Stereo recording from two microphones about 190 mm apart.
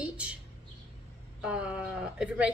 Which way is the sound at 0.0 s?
5° right (ahead or behind).